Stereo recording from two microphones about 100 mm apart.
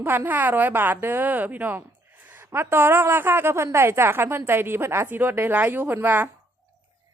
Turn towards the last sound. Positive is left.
turn(degrees=-20)  # may be behind; listen again after turning